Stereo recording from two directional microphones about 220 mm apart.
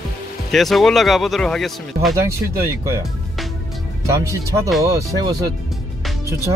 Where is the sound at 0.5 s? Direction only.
Centre (ahead or behind).